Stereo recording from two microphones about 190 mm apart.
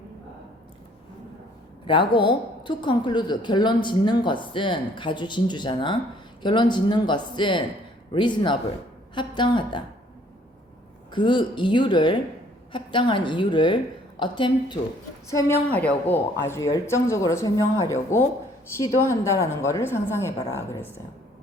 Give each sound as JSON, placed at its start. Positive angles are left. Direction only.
{"t": 1.9, "sound": "a woman's voice", "side_deg": 25}
{"t": 11.1, "sound": "a woman's voice", "side_deg": 25}
{"t": 15.3, "sound": "speech", "side_deg": 15}